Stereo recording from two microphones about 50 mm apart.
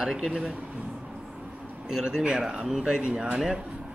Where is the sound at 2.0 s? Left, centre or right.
Centre.